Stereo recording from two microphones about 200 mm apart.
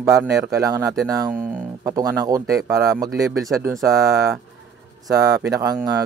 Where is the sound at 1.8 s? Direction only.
15° right (ahead or behind).